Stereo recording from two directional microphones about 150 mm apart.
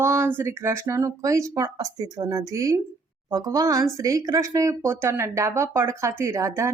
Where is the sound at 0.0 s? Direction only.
15° right (ahead or behind).